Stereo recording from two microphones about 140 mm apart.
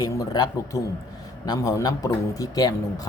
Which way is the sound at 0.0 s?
25° left (ahead or behind).